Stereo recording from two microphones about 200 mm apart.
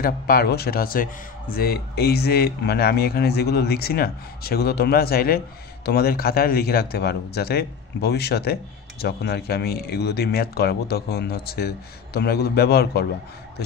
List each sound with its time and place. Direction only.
0.0 s speech: 50° left (ahead or behind)